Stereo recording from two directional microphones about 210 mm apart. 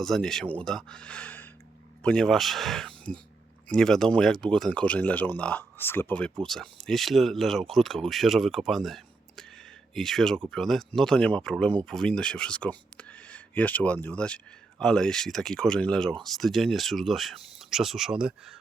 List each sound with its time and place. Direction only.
0.0 s speech: centre (ahead or behind)